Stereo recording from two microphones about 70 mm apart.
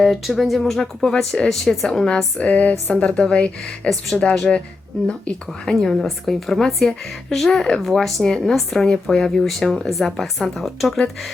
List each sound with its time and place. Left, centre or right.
0.0 s a woman's voice: centre
2.4 s a sound: left
3.1 s a woman's voice: centre